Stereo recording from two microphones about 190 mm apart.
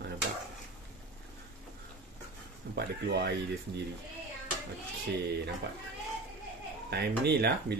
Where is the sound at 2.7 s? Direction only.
60° right (ahead or behind).